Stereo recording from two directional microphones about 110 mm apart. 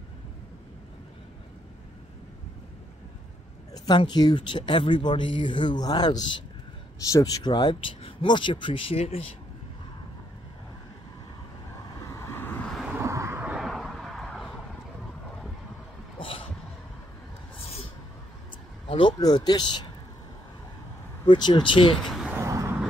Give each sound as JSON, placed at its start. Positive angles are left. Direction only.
{"t": 3.7, "sound": "a sound", "side_deg": 40}
{"t": 4.0, "sound": "speech", "side_deg": 40}
{"t": 7.1, "sound": "speech", "side_deg": 30}
{"t": 11.9, "sound": "vehicle", "side_deg": 30}
{"t": 12.9, "sound": "a sound", "side_deg": -25}
{"t": 13.6, "sound": "vehicle", "side_deg": 0}
{"t": 16.2, "sound": "heart sounds", "side_deg": 55}
{"t": 18.9, "sound": "a sound", "side_deg": 50}
{"t": 19.1, "sound": "speech", "side_deg": 40}
{"t": 21.3, "sound": "speech", "side_deg": 40}
{"t": 22.0, "sound": "vehicle", "side_deg": 0}
{"t": 22.3, "sound": "vehicle", "side_deg": -25}